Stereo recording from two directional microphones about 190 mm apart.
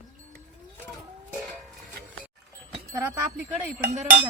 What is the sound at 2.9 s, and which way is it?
Speech, 15° right (ahead or behind).